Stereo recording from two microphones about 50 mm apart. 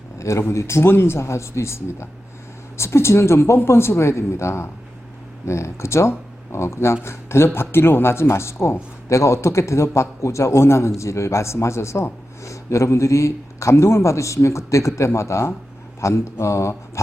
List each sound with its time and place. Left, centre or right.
0.2 s speech: left
0.5 s speech: left